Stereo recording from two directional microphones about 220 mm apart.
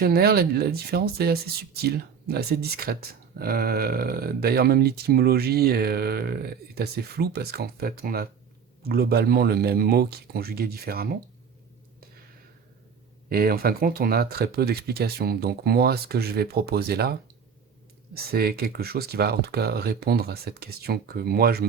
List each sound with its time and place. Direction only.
0.0 s speech: 45° right (ahead or behind)
13.3 s speech: 45° right (ahead or behind)